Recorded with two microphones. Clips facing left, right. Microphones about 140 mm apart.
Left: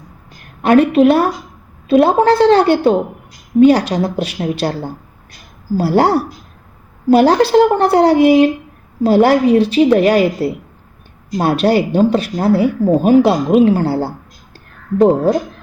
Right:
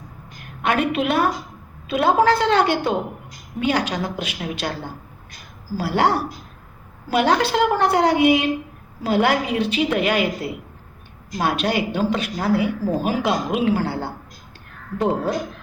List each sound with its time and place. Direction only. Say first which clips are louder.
0.6 s speech: left 11 dB; 35° left (ahead or behind)